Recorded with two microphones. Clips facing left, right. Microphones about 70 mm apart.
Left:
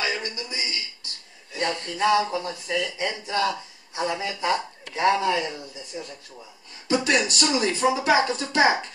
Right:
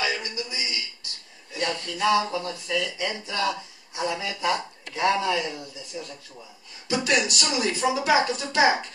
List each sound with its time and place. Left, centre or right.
0.0 s a sound: left
2.2 s speech: left
6.9 s speech: left